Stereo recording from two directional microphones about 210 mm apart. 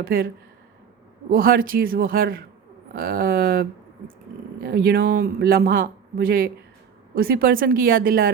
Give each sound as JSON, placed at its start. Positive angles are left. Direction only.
{"t": 0.0, "sound": "speech", "side_deg": -45}
{"t": 1.3, "sound": "speech", "side_deg": -45}